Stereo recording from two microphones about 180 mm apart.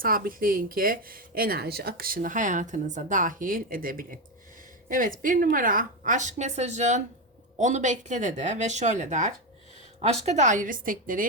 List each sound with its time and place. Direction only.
0.0 s speech: 50° right (ahead or behind)